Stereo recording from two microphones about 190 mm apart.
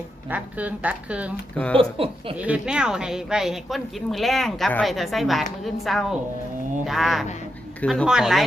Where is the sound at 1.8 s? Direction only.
30° right (ahead or behind).